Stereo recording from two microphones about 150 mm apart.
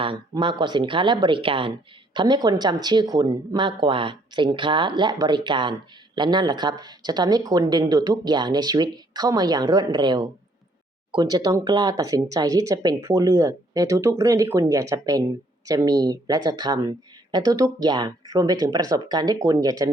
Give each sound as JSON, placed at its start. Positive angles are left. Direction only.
{"t": 0.0, "sound": "speech", "side_deg": -35}